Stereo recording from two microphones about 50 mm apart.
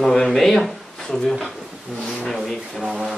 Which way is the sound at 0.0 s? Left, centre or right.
Centre.